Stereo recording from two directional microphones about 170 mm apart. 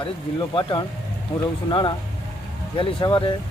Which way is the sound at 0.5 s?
25° left (ahead or behind).